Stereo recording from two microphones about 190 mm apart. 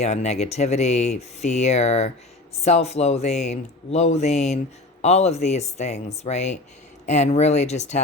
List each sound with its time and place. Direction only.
0.0 s speech: 35° left (ahead or behind)